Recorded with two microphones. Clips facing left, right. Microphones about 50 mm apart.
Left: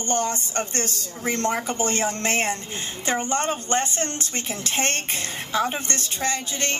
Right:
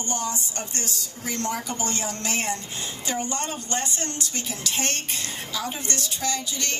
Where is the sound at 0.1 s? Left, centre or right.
Left.